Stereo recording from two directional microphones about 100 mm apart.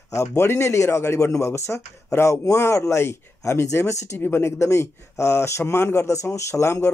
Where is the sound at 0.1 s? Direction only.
30° left (ahead or behind).